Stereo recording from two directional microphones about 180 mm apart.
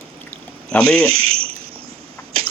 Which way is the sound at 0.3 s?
5° left (ahead or behind).